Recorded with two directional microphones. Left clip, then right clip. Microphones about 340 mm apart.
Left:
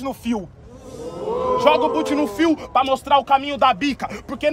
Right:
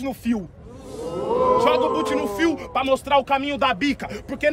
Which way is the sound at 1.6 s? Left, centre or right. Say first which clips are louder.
Left 2 dB; centre.